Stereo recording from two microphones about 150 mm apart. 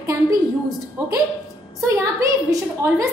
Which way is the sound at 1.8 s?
20° right (ahead or behind).